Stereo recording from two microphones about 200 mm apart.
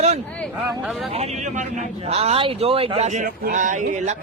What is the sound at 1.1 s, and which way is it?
Speech, 35° right (ahead or behind).